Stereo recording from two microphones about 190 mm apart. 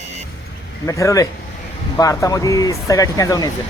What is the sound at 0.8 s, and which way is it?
Speech, 15° left (ahead or behind).